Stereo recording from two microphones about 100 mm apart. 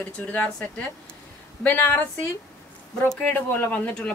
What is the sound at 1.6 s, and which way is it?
Speech, 15° left (ahead or behind).